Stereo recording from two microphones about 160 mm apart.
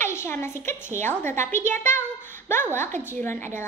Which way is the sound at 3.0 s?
15° left (ahead or behind).